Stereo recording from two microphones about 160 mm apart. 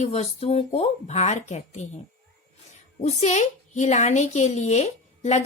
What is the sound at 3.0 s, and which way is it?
A woman's voice, 45° left (ahead or behind).